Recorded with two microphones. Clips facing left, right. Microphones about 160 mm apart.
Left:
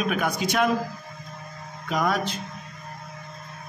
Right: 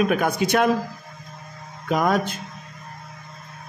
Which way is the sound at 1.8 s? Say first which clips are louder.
Right 4 dB; 50° right (ahead or behind).